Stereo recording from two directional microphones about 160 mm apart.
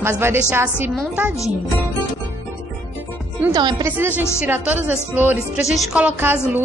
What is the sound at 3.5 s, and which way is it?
Speech, 25° right (ahead or behind).